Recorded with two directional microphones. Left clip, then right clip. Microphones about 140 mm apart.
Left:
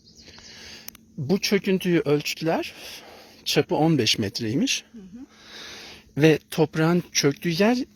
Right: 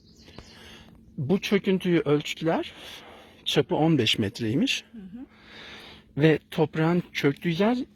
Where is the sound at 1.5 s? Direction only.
25° left (ahead or behind).